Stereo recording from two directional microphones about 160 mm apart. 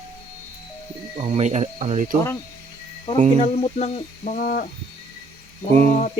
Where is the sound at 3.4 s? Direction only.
40° left (ahead or behind).